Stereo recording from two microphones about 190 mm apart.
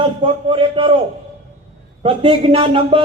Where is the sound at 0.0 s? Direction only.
25° right (ahead or behind).